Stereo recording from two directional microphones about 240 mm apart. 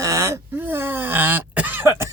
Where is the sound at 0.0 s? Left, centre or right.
Centre.